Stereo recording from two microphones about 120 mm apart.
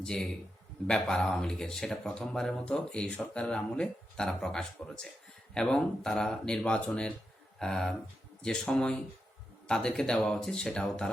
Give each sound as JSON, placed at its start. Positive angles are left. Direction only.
{"t": 0.0, "sound": "speech", "side_deg": 5}